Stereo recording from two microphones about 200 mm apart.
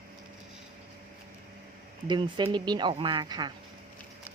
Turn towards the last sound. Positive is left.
turn(degrees=-20)  # may be behind; listen again after turning